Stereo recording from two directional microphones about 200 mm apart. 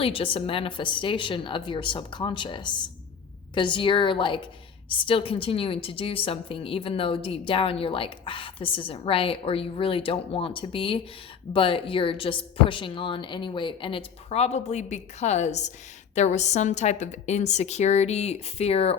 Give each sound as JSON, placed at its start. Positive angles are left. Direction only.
{"t": 0.0, "sound": "a woman's voice", "side_deg": 25}